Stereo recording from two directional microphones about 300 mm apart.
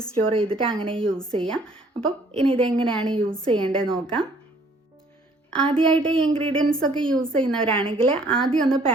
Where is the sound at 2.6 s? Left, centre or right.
Centre.